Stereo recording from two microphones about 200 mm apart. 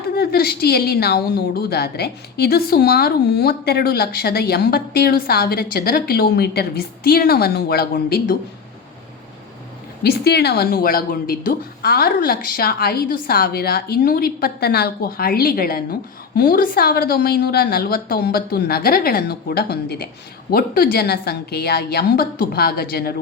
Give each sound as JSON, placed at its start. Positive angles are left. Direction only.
{"t": 0.1, "sound": "speech", "side_deg": 50}
{"t": 10.0, "sound": "speech", "side_deg": 55}